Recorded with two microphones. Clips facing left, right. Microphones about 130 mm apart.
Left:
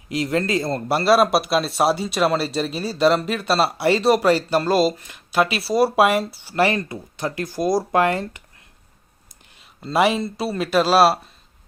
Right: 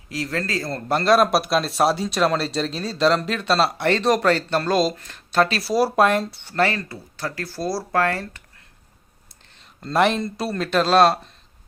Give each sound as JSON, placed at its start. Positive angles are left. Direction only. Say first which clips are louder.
{"t": 0.1, "sound": "speech", "louder": "left 5 dB", "side_deg": 20}
{"t": 0.9, "sound": "speech", "louder": "even", "side_deg": 5}
{"t": 9.3, "sound": "speech", "louder": "even", "side_deg": 5}